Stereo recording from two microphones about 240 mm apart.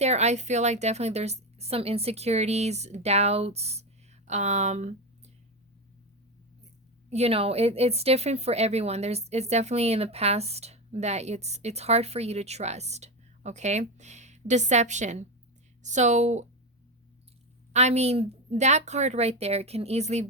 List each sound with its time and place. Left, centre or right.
0.0 s speech: right
7.1 s speech: right
17.7 s speech: right